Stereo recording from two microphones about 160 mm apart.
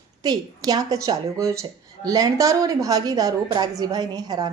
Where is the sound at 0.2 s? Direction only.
25° right (ahead or behind).